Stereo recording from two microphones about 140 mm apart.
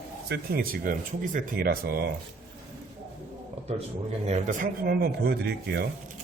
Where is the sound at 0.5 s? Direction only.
90° right.